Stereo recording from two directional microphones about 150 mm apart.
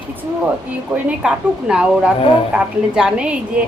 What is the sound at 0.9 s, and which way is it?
A woman's voice, 10° right (ahead or behind).